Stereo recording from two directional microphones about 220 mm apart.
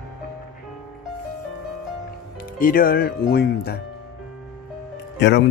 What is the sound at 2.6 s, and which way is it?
Speech, 40° left (ahead or behind).